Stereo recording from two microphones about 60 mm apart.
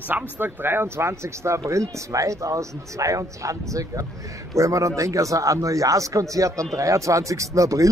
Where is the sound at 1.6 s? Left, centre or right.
Right.